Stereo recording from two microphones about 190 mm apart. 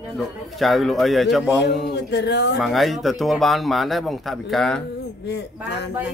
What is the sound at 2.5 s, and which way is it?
Speech, centre (ahead or behind).